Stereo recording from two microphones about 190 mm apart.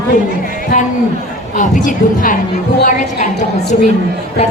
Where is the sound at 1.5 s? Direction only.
40° left (ahead or behind).